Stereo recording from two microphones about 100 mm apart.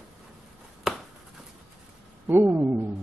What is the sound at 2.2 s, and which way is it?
Speech, 20° right (ahead or behind).